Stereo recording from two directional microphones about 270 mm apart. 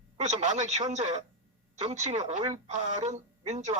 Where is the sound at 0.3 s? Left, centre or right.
Right.